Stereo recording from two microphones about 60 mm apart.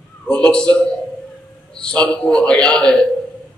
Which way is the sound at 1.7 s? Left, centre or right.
Centre.